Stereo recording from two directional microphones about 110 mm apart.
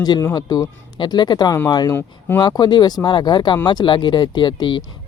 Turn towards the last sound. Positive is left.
turn(degrees=45)  # may be behind; listen again after turning